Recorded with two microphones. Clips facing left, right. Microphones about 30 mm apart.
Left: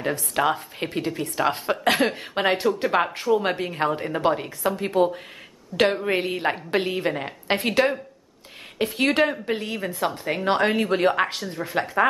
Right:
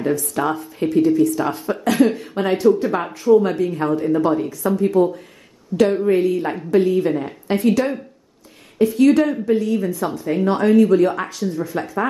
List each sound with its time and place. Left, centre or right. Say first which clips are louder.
0.0 s speech: right 3 dB; left